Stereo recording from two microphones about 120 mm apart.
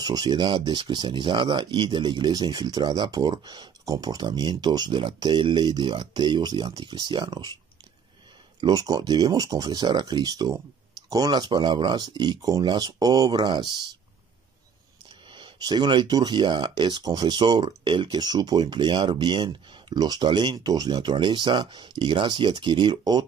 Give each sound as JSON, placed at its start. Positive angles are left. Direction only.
{"t": 0.0, "sound": "speech", "side_deg": -35}
{"t": 8.5, "sound": "speech", "side_deg": -35}
{"t": 15.2, "sound": "speech", "side_deg": -40}